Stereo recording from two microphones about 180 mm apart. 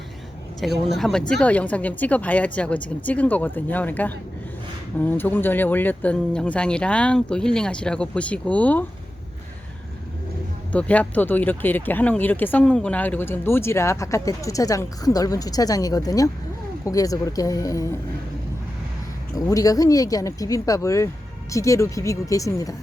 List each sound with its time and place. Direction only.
0.6 s speech: centre (ahead or behind)
10.7 s speech: 5° left (ahead or behind)
19.5 s speech: 20° left (ahead or behind)